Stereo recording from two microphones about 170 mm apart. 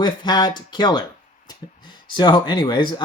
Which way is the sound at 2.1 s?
25° left (ahead or behind).